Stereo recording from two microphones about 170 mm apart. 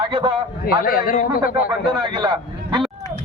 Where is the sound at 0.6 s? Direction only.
60° left (ahead or behind).